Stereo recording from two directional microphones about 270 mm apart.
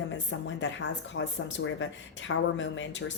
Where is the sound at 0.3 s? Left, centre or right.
Left.